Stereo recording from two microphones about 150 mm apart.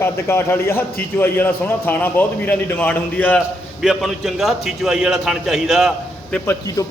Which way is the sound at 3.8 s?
Centre (ahead or behind).